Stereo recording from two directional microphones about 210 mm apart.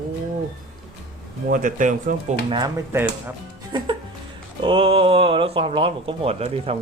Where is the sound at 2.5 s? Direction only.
20° right (ahead or behind).